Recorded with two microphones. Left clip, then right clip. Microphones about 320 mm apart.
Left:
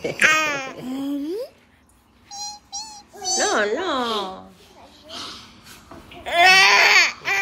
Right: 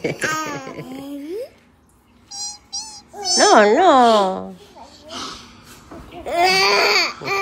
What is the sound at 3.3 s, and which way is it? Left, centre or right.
Speech, centre.